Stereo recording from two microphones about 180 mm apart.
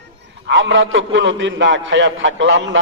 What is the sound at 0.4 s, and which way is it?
A man's voice, 90° right.